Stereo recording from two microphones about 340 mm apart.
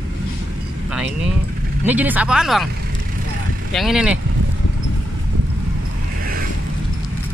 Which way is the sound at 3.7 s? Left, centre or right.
Centre.